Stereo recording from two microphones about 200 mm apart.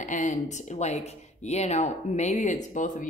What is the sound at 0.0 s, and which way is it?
Speech, 40° left (ahead or behind).